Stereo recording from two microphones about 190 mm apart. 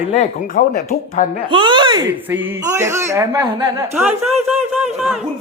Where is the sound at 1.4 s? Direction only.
25° right (ahead or behind).